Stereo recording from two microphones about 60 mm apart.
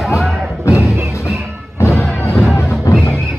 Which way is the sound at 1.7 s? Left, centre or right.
Left.